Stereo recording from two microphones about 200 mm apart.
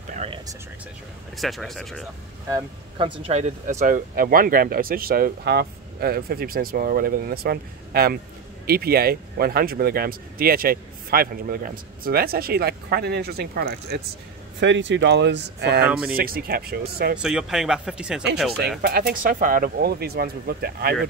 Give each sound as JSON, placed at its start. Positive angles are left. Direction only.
{"t": 0.1, "sound": "a sound", "side_deg": -30}
{"t": 1.3, "sound": "speech", "side_deg": 0}
{"t": 2.5, "sound": "speech", "side_deg": -25}
{"t": 3.3, "sound": "speech", "side_deg": -35}
{"t": 14.6, "sound": "speech", "side_deg": -65}
{"t": 17.2, "sound": "speech", "side_deg": -5}
{"t": 18.8, "sound": "speech", "side_deg": -50}